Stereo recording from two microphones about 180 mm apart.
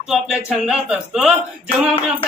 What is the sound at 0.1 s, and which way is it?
A man's voice, 5° right (ahead or behind).